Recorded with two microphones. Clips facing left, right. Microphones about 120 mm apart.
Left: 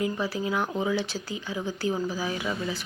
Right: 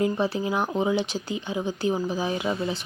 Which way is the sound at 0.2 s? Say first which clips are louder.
Right 3 dB; 25° right (ahead or behind).